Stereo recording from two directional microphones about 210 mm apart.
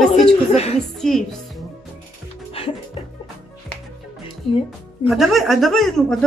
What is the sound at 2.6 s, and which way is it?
Music, 25° left (ahead or behind).